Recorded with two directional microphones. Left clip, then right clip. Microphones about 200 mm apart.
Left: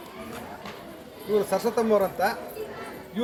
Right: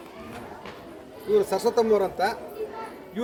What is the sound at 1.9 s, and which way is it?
Speech, 20° right (ahead or behind).